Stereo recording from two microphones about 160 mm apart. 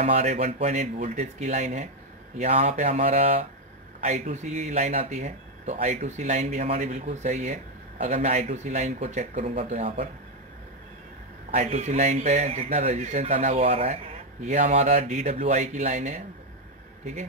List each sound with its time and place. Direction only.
0.0 s speech: 45° right (ahead or behind)
11.5 s speech: 45° right (ahead or behind)